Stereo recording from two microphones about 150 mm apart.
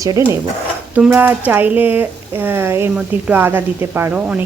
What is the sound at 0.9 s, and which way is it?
A woman's voice, 10° right (ahead or behind).